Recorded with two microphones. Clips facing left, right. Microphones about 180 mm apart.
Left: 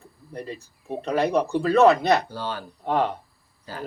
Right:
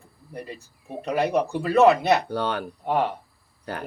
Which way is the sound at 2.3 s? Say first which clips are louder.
Right 5 dB; 65° right (ahead or behind).